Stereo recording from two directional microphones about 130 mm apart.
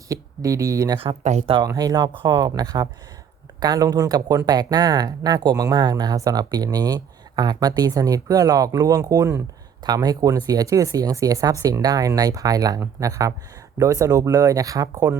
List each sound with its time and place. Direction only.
0.1 s speech: 25° right (ahead or behind)
1.2 s speech: 60° right (ahead or behind)
1.6 s speech: 30° right (ahead or behind)